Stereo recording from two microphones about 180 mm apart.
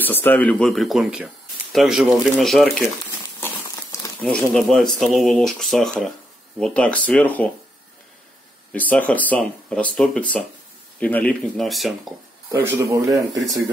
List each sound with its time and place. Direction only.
0.0 s speech: 10° left (ahead or behind)
3.3 s a sound: 10° left (ahead or behind)
4.6 s speech: centre (ahead or behind)
8.7 s speech: 10° left (ahead or behind)
12.4 s speech: 10° right (ahead or behind)